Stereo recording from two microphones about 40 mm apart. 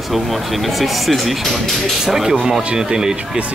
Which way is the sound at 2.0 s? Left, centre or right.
Centre.